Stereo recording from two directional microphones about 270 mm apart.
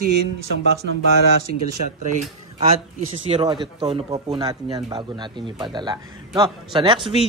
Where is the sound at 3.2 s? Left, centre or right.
Centre.